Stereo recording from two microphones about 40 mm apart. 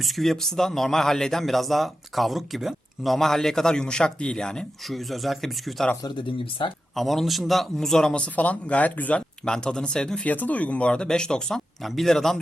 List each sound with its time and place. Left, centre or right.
0.0 s a man's voice: centre
4.9 s speech: centre
6.9 s speech: centre
7.8 s a man's voice: centre
8.4 s speech: left
9.4 s speech: centre
10.2 s speech: left; by 11.6 s centre
11.8 s a man's voice: centre